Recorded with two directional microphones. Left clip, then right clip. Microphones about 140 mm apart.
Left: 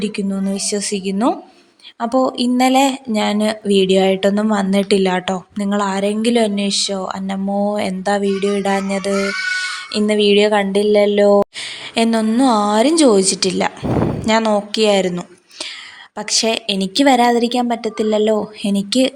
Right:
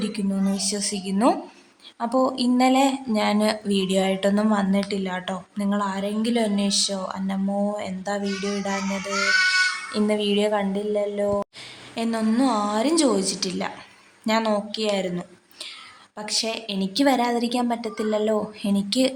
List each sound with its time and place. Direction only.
0.0 s speech: 35° left (ahead or behind)